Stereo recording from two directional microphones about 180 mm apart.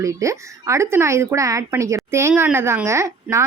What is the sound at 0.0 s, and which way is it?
Speech, 15° right (ahead or behind).